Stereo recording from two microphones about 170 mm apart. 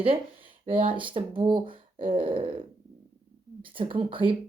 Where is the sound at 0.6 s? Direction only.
30° right (ahead or behind).